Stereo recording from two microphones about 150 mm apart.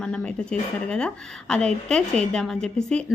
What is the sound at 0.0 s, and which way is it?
Speech, 5° left (ahead or behind).